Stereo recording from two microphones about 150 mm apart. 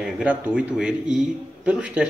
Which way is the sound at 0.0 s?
5° right (ahead or behind).